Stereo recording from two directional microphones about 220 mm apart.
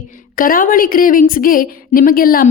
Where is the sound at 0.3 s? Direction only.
40° left (ahead or behind).